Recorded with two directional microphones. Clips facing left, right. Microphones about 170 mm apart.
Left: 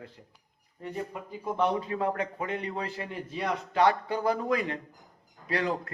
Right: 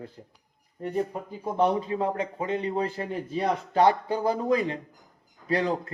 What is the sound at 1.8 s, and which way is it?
A man's voice, 25° right (ahead or behind).